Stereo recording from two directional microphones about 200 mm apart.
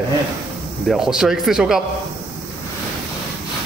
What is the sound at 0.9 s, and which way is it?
Speech, centre (ahead or behind).